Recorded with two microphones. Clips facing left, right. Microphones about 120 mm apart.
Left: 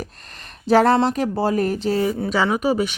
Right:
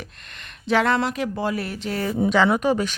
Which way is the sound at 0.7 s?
35° left (ahead or behind).